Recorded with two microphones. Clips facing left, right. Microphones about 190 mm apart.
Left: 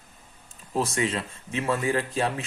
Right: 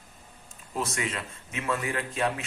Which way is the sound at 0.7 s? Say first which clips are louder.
Left 5 dB; 30° left (ahead or behind).